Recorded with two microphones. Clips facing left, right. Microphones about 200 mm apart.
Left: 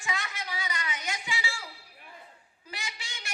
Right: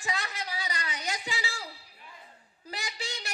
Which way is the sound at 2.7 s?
40° right (ahead or behind).